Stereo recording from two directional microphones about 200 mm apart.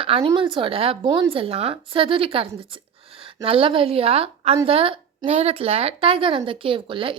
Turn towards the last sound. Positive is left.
turn(degrees=-25)  # may be behind; listen again after turning